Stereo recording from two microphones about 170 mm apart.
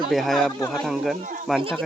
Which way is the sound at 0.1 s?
Centre (ahead or behind).